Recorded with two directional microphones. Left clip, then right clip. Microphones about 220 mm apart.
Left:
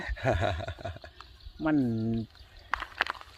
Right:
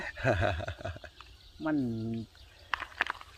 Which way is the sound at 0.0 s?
Centre (ahead or behind).